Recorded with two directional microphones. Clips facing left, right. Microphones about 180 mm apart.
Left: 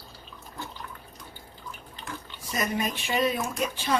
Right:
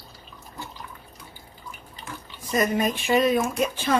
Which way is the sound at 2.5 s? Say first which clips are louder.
Right 6 dB; 45° right (ahead or behind).